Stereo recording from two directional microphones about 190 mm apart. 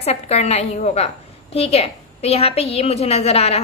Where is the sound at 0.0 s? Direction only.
35° left (ahead or behind).